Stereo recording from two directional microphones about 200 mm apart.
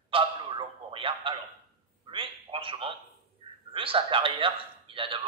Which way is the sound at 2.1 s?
25° right (ahead or behind).